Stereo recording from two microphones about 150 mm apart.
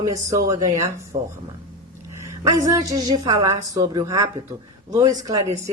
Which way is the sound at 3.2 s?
25° right (ahead or behind).